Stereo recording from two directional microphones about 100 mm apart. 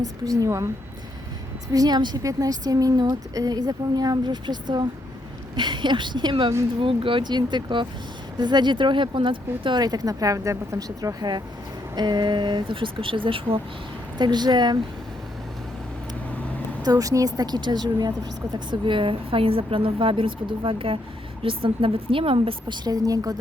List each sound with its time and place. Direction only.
0.0 s a woman's voice: 35° right (ahead or behind)
1.7 s a woman's voice: 40° right (ahead or behind); by 13.6 s 60° right (ahead or behind)
14.2 s speech: 45° right (ahead or behind)
16.8 s a woman's voice: 40° right (ahead or behind)
18.7 s speech: 55° right (ahead or behind); by 23.4 s 35° right (ahead or behind)